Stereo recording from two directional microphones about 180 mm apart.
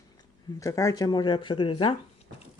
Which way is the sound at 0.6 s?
20° left (ahead or behind).